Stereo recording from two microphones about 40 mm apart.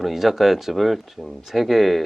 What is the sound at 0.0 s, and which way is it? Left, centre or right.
Speech, centre.